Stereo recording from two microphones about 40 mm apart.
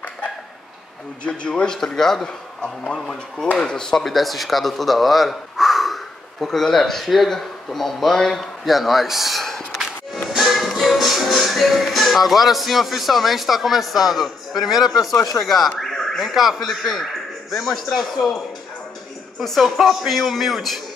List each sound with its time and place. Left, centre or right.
1.2 s a man's voice: left
1.7 s speech: centre
2.2 s speech: left
4.0 s speech: centre
6.4 s speech: centre
8.6 s speech: centre
9.4 s gasp: centre
10.3 s music: centre
15.3 s speech: centre
19.4 s speech: centre